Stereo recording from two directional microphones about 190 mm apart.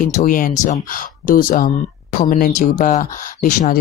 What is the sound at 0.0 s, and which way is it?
Speech, 45° left (ahead or behind).